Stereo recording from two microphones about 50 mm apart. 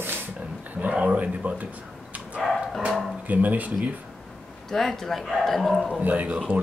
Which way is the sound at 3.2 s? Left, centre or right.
Right.